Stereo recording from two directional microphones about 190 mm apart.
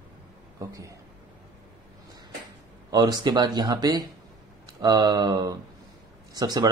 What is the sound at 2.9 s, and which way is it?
A man's voice, 20° right (ahead or behind).